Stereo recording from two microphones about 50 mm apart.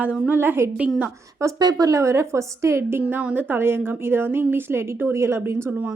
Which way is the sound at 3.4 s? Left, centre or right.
Right.